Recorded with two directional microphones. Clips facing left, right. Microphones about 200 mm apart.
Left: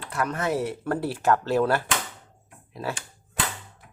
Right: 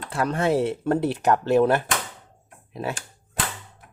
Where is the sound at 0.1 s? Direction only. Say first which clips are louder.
Right 4 dB; 30° right (ahead or behind).